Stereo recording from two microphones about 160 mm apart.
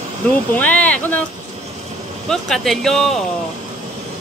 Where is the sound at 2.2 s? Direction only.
5° left (ahead or behind).